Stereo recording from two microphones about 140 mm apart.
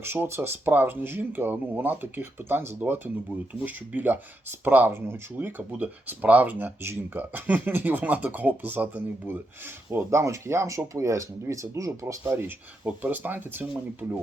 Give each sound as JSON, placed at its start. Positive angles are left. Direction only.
{"t": 0.0, "sound": "speech", "side_deg": -15}